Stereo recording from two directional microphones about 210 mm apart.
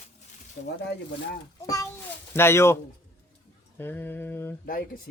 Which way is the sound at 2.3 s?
10° left (ahead or behind).